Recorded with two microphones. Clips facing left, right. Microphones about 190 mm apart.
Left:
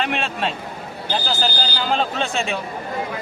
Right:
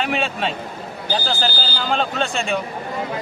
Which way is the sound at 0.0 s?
Centre (ahead or behind).